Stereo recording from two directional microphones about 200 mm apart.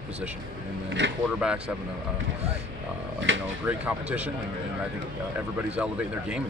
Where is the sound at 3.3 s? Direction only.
65° right (ahead or behind).